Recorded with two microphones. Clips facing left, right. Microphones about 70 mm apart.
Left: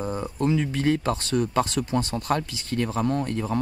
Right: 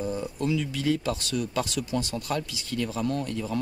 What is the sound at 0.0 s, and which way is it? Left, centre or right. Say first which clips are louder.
Speech: left 3 dB; left.